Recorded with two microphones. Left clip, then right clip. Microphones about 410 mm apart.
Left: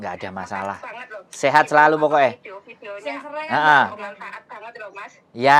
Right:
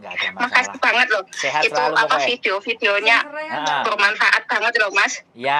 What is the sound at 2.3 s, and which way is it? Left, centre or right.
Speech, right.